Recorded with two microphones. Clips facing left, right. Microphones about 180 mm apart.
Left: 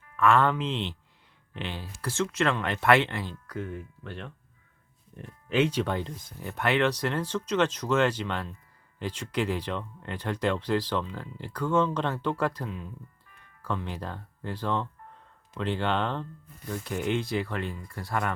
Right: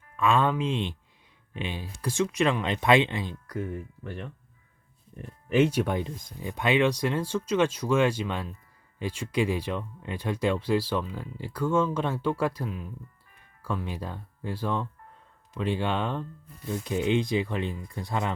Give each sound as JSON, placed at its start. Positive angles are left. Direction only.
{"t": 0.2, "sound": "speech", "side_deg": -15}
{"t": 5.5, "sound": "speech", "side_deg": -10}